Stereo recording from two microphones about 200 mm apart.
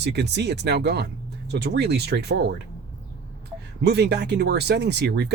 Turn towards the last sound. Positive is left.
turn(degrees=-55)  # may be behind; listen again after turning